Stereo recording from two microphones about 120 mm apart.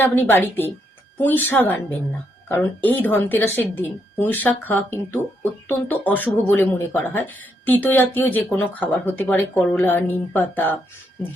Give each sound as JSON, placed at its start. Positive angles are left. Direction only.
{"t": 0.0, "sound": "a woman's voice", "side_deg": 15}